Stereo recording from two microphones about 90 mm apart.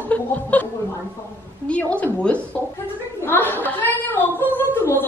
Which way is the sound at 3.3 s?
20° left (ahead or behind).